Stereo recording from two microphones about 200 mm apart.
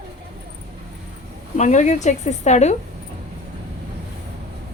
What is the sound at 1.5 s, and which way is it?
A woman's voice, 35° left (ahead or behind).